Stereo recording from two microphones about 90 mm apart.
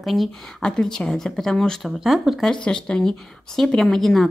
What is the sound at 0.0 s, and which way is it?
Speech, centre (ahead or behind).